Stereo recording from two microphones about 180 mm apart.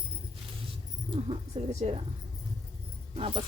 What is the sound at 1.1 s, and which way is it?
Speech, 30° right (ahead or behind).